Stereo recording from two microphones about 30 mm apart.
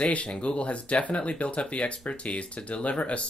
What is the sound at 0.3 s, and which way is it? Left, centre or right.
Speech, left.